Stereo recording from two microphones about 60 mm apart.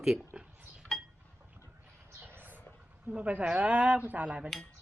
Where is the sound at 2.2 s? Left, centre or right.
Right.